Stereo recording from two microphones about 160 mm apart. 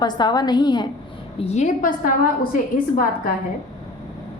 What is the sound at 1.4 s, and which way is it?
Speech, 45° left (ahead or behind).